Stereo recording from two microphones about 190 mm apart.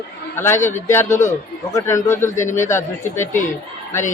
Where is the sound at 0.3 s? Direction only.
10° left (ahead or behind).